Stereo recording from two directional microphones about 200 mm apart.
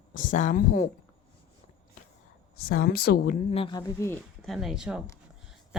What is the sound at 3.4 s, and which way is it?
Speech, 25° left (ahead or behind).